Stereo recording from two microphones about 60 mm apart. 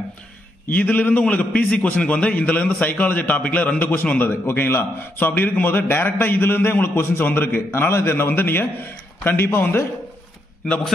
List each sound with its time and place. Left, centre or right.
0.7 s a man's voice: left